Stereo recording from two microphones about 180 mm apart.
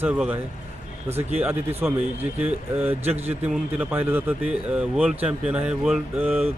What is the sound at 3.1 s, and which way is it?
Speech, 35° right (ahead or behind).